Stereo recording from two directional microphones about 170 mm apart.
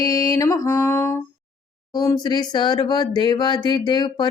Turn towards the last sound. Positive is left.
turn(degrees=25)  # may be behind; listen again after turning